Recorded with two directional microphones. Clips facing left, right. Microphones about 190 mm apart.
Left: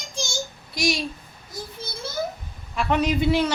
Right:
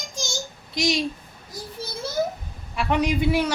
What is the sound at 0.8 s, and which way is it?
Speech, 20° right (ahead or behind).